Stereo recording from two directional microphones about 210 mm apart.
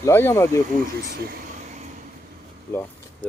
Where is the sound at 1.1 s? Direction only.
45° right (ahead or behind).